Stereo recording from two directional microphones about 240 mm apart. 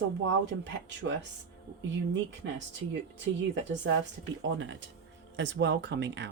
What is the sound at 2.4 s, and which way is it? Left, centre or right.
Speech, right.